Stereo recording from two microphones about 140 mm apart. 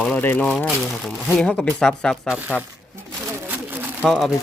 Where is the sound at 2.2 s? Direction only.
10° right (ahead or behind).